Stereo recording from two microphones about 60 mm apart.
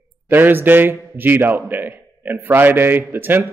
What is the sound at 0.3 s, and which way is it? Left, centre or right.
A man's voice, right.